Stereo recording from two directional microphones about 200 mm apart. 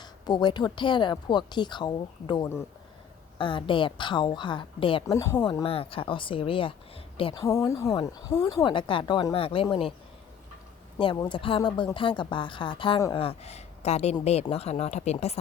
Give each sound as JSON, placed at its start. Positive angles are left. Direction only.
{"t": 0.0, "sound": "speech", "side_deg": 20}
{"t": 5.1, "sound": "speech", "side_deg": 15}
{"t": 7.4, "sound": "speech", "side_deg": 15}
{"t": 10.9, "sound": "speech", "side_deg": 25}